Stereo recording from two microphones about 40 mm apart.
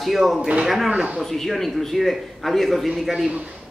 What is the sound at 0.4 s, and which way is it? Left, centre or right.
Speech, right.